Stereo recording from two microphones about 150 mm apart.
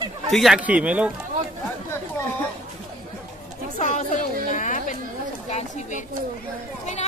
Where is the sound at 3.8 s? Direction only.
55° left (ahead or behind).